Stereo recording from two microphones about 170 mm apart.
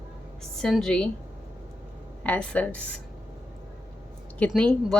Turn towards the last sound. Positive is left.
turn(degrees=5)  # may be behind; listen again after turning